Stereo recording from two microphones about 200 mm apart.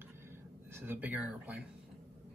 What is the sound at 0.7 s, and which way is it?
Speech, 10° right (ahead or behind).